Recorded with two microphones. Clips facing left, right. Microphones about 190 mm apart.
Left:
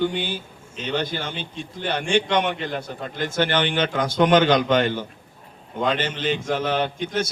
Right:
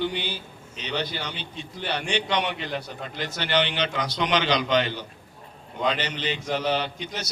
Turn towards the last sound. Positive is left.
turn(degrees=50)  # may be behind; listen again after turning